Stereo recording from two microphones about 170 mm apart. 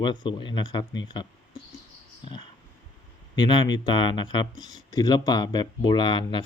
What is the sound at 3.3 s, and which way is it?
Speech, 25° left (ahead or behind).